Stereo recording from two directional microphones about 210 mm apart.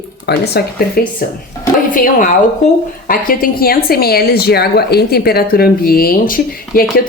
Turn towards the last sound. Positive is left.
turn(degrees=45)  # may be behind; listen again after turning